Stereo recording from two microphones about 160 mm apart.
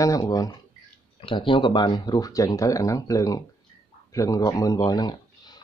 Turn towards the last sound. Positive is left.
turn(degrees=25)  # may be behind; listen again after turning